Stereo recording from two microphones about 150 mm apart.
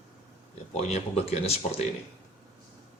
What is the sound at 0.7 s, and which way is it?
Speech, 45° left (ahead or behind).